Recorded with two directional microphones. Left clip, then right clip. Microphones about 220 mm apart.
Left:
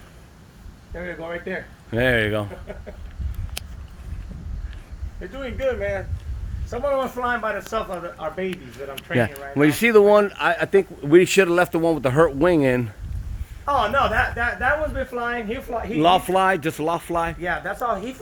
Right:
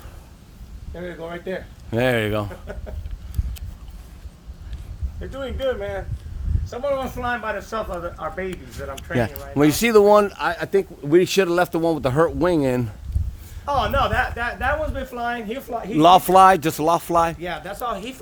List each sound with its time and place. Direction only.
0.9 s speech: 30° right (ahead or behind)
1.9 s speech: 15° right (ahead or behind)
5.4 s speech: 15° right (ahead or behind)
7.0 s a man's voice: 35° left (ahead or behind)
7.3 s speech: 15° left (ahead or behind)
8.0 s speech: 25° right (ahead or behind)
9.1 s speech: 5° right (ahead or behind)
15.1 s speech: 30° right (ahead or behind)
17.4 s speech: 10° left (ahead or behind)
17.7 s speech: 25° left (ahead or behind)